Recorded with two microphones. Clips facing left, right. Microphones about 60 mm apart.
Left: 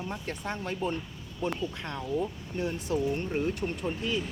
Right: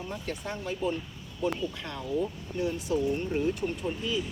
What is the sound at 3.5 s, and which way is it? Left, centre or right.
Speech, left.